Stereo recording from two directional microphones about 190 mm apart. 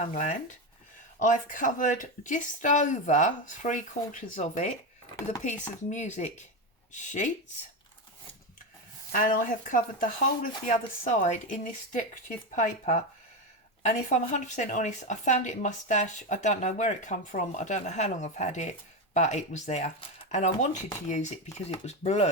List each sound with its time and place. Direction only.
0.0 s speech: 40° left (ahead or behind)
9.1 s speech: 45° left (ahead or behind)